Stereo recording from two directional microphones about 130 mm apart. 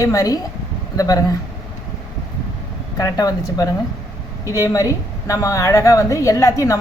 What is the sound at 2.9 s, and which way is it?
A woman's voice, 25° left (ahead or behind).